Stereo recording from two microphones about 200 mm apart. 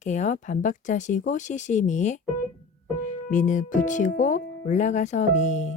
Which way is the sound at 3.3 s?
40° left (ahead or behind).